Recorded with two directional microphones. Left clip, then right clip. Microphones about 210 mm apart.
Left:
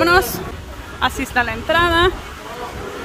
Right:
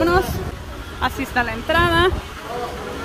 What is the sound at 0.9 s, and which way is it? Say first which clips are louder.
Speech: left 3 dB; 20° left (ahead or behind).